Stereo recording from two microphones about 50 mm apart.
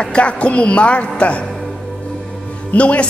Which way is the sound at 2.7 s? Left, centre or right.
Left.